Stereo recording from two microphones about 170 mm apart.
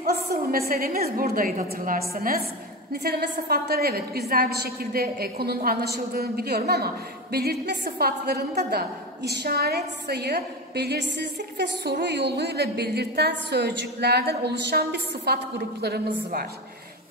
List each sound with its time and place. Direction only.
0.0 s a woman's voice: 65° right (ahead or behind)